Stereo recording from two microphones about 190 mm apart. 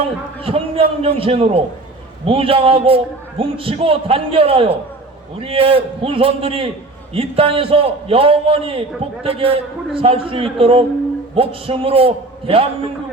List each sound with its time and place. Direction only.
0.0 s a man's voice: 30° right (ahead or behind)